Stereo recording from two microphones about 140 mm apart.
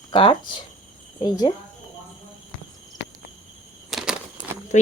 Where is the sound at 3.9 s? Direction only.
5° right (ahead or behind).